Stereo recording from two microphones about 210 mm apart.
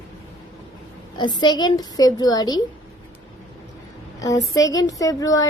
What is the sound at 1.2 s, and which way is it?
A woman's voice, 20° left (ahead or behind).